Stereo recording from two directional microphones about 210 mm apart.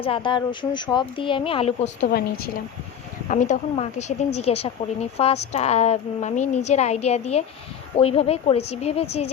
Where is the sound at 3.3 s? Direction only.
35° left (ahead or behind).